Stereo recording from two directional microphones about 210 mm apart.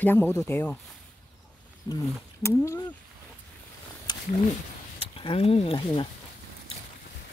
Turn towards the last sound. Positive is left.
turn(degrees=25)  # may be behind; listen again after turning